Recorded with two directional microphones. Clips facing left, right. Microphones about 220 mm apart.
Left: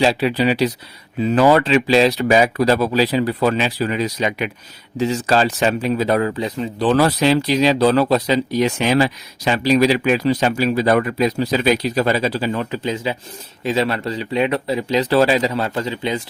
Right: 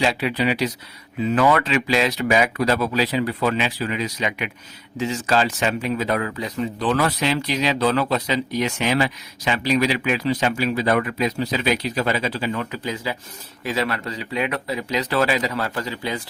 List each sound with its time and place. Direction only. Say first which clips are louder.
0.0 s speech: left 5 dB; 30° left (ahead or behind)